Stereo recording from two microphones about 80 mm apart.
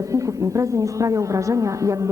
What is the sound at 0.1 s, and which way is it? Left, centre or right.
A woman's voice, right.